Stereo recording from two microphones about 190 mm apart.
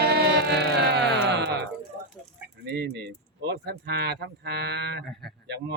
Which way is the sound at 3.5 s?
65° right (ahead or behind).